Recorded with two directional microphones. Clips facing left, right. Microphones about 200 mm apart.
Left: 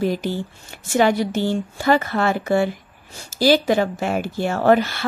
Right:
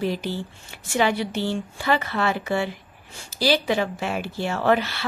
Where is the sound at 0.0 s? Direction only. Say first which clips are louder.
Left 4 dB; 45° left (ahead or behind).